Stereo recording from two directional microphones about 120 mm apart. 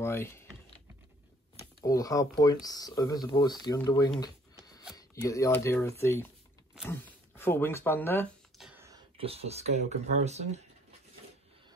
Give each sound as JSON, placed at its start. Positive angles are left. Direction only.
{"t": 0.0, "sound": "speech", "side_deg": 20}
{"t": 1.9, "sound": "speech", "side_deg": 30}
{"t": 4.2, "sound": "a sound", "side_deg": 30}
{"t": 4.9, "sound": "speech", "side_deg": 25}
{"t": 9.2, "sound": "speech", "side_deg": -55}